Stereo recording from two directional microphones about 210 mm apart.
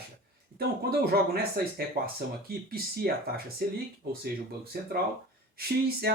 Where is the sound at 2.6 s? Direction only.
45° right (ahead or behind).